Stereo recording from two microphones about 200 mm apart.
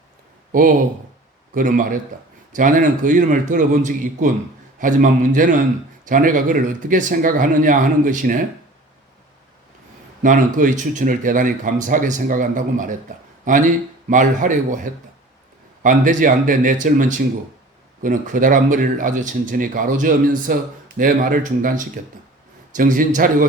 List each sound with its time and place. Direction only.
1.5 s speech: 40° right (ahead or behind)
10.2 s speech: 40° right (ahead or behind)